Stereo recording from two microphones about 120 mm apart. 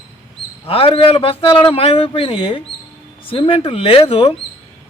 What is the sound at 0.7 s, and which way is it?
Speech, 50° left (ahead or behind).